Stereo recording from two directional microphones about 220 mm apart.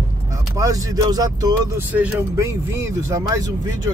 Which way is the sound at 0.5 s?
15° right (ahead or behind).